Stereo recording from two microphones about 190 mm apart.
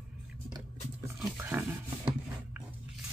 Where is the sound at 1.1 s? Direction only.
5° right (ahead or behind).